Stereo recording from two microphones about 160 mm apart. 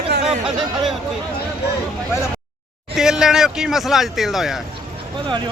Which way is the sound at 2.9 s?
5° right (ahead or behind).